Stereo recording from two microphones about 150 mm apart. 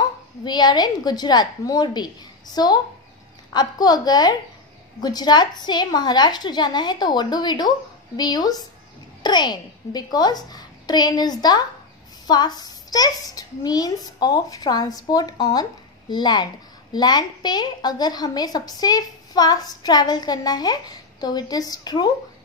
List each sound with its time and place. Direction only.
0.5 s a woman's voice: 30° left (ahead or behind)